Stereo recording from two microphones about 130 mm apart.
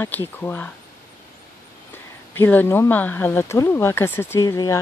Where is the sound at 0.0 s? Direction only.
15° left (ahead or behind).